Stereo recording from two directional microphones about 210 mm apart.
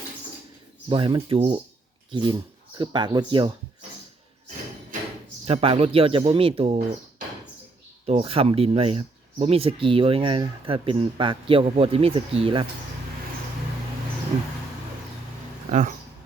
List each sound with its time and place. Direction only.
0.9 s speech: 25° right (ahead or behind)
5.5 s speech: 30° right (ahead or behind)
8.0 s speech: 30° right (ahead or behind)
15.7 s speech: 40° right (ahead or behind)